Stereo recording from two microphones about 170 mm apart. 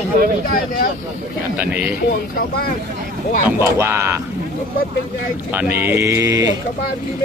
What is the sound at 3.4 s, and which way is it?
Speech, 15° right (ahead or behind).